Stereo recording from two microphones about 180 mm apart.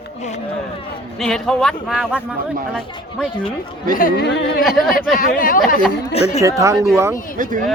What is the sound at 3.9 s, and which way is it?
Speech, 50° left (ahead or behind).